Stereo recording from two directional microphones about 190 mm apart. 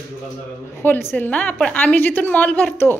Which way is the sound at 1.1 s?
10° left (ahead or behind).